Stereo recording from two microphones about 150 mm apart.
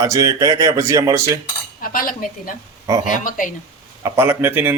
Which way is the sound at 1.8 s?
70° left (ahead or behind).